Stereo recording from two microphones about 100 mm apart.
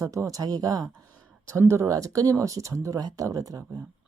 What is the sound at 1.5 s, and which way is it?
Speech, 30° right (ahead or behind).